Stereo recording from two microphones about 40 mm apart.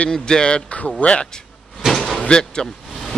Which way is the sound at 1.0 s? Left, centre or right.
Left.